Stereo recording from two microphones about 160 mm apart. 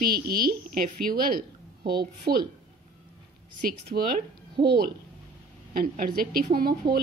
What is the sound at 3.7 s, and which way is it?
Speech, 70° right (ahead or behind).